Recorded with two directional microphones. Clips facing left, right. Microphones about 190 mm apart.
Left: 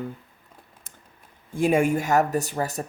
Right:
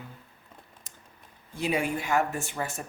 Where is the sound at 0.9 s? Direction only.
55° left (ahead or behind).